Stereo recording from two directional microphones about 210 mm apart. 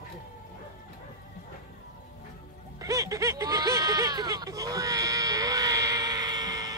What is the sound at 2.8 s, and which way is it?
Bleat, 15° right (ahead or behind).